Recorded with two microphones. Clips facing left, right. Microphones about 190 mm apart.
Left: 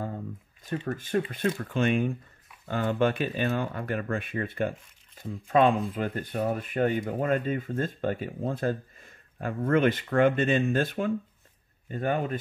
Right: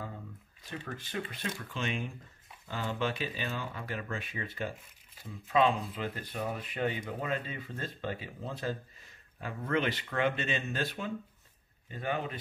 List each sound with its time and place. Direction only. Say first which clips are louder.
0.7 s speech: left 10 dB; 50° left (ahead or behind)